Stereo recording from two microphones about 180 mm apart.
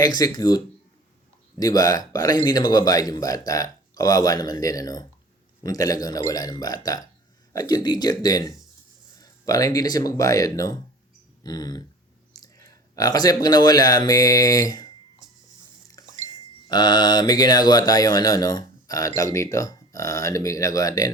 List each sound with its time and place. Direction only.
0.0 s a man's voice: 20° left (ahead or behind)
16.2 s speech: 25° left (ahead or behind)